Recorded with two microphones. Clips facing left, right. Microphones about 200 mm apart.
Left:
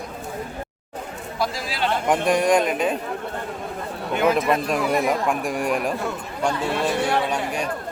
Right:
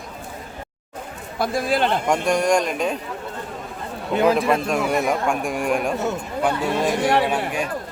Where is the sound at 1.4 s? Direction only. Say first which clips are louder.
Right 5 dB; 55° right (ahead or behind).